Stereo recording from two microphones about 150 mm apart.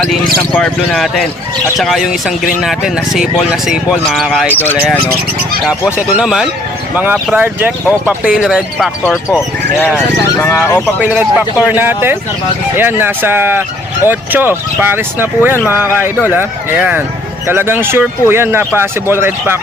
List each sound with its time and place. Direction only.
0.5 s speech: 5° left (ahead or behind)
4.4 s speech: 15° left (ahead or behind)
5.6 s speech: 5° right (ahead or behind)
10.6 s speech: 15° left (ahead or behind)
11.0 s speech: 10° right (ahead or behind)